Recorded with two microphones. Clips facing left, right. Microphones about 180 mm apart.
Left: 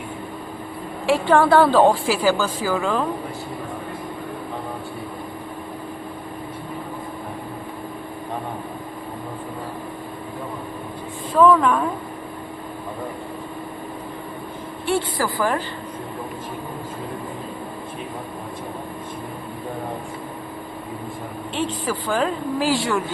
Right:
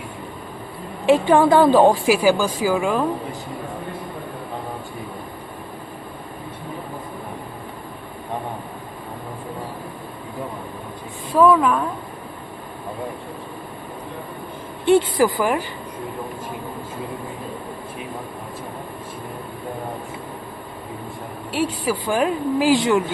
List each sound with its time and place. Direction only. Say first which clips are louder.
1.0 s a woman's voice: right 2 dB; 15° right (ahead or behind)
11.3 s a woman's voice: even; 10° right (ahead or behind)
14.8 s a woman's voice: right 7 dB; 20° right (ahead or behind)
21.5 s a woman's voice: right 3 dB; 10° right (ahead or behind)